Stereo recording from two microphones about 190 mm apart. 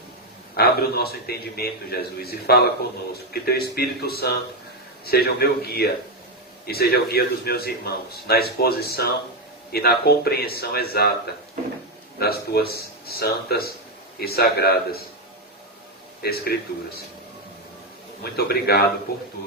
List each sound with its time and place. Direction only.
0.5 s a man's voice: 55° left (ahead or behind)
12.2 s a man's voice: 55° left (ahead or behind)
16.2 s a man's voice: 55° left (ahead or behind)
18.2 s a man's voice: 55° left (ahead or behind)